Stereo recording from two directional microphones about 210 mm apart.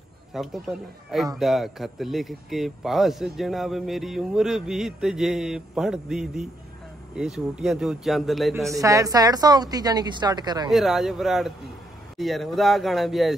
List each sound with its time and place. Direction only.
0.3 s speech: centre (ahead or behind)
8.7 s a woman's voice: 15° right (ahead or behind)
10.7 s speech: centre (ahead or behind)